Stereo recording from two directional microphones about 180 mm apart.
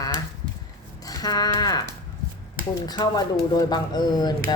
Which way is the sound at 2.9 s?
20° left (ahead or behind).